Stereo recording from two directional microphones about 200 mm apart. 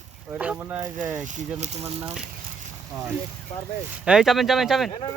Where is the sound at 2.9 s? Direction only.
15° right (ahead or behind).